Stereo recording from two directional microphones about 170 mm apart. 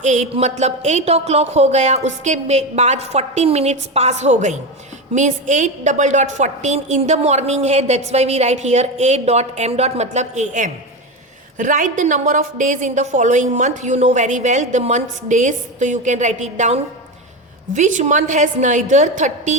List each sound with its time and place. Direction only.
0.0 s a woman's voice: 45° right (ahead or behind)